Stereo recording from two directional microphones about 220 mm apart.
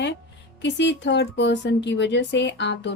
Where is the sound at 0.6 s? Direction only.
50° left (ahead or behind).